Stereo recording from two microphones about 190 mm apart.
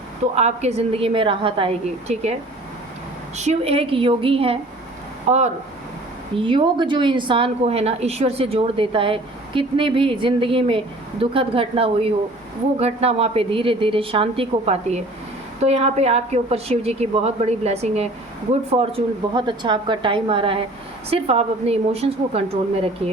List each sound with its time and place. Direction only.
0.3 s a woman's voice: 35° right (ahead or behind)
3.3 s a woman's voice: 35° right (ahead or behind)
6.3 s a woman's voice: 25° right (ahead or behind)